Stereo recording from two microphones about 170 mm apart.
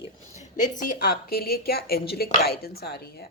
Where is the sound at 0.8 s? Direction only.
55° left (ahead or behind).